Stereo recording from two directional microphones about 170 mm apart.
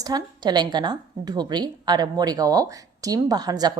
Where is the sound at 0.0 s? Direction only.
25° right (ahead or behind).